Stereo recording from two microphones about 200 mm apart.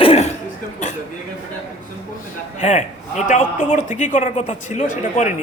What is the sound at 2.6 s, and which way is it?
A man's voice, 35° left (ahead or behind).